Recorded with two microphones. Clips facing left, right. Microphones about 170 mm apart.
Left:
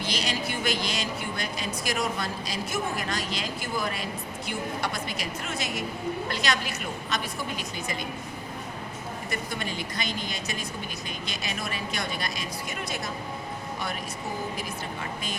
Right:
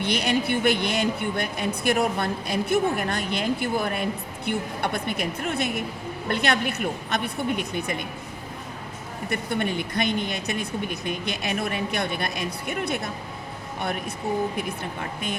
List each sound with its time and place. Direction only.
0.0 s speech: 60° right (ahead or behind)
9.3 s speech: 60° right (ahead or behind)